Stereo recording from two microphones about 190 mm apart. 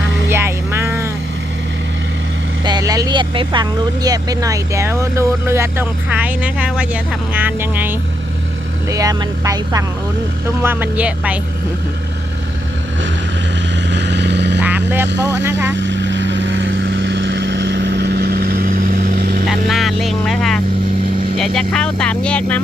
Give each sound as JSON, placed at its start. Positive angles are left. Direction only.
{"t": 0.3, "sound": "music", "side_deg": -15}
{"t": 2.6, "sound": "speech", "side_deg": -20}
{"t": 13.9, "sound": "vehicle", "side_deg": -65}
{"t": 15.4, "sound": "speech", "side_deg": -15}
{"t": 15.7, "sound": "vehicle", "side_deg": -75}
{"t": 19.5, "sound": "speech", "side_deg": 0}